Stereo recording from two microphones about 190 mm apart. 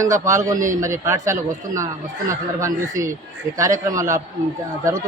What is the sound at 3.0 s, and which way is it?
Speech, 15° right (ahead or behind).